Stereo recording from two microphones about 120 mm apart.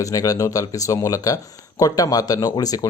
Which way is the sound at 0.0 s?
30° left (ahead or behind).